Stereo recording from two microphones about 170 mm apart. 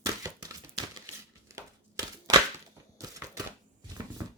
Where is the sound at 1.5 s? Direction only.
20° right (ahead or behind).